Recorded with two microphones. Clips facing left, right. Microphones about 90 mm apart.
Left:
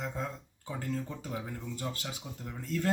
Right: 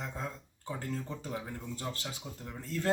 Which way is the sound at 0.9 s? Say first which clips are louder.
Left 5 dB; 15° right (ahead or behind).